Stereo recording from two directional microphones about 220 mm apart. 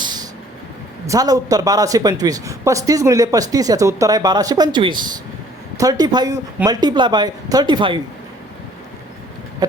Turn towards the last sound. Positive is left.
turn(degrees=-20)  # may be behind; listen again after turning